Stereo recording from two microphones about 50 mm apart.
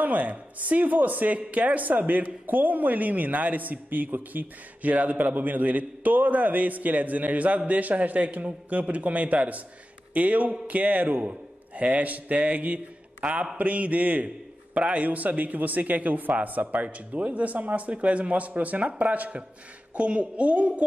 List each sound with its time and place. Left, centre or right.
0.0 s a woman's voice: right